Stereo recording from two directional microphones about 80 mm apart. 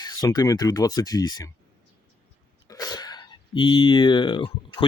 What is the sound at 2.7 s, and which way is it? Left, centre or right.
Speech, left.